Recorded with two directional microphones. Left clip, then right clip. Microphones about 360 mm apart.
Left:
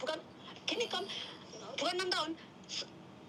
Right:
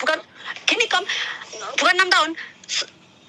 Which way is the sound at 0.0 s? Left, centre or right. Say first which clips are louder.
Right 17 dB; right.